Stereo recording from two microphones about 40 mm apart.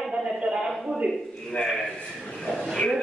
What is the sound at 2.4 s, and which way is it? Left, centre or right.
Speech, centre.